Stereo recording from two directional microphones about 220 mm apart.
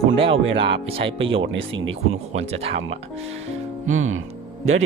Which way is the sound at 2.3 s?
30° right (ahead or behind).